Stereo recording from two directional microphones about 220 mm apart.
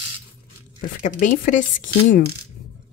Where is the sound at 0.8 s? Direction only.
35° left (ahead or behind).